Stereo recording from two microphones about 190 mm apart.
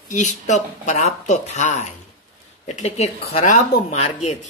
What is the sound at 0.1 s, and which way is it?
Speech, 40° left (ahead or behind).